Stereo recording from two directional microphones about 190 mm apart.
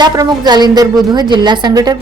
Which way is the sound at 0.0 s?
20° right (ahead or behind).